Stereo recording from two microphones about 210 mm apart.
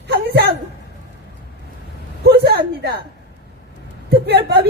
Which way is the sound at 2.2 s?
50° right (ahead or behind).